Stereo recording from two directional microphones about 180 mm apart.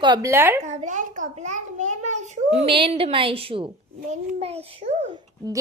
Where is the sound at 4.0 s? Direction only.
35° right (ahead or behind).